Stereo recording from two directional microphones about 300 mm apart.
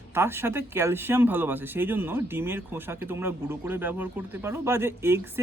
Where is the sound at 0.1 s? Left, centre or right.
Centre.